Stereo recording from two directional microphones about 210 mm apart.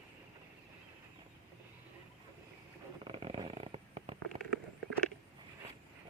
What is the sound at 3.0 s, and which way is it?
Snoring, 25° right (ahead or behind).